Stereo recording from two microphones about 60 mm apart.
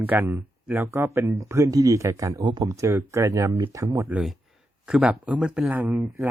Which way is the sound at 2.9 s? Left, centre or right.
Right.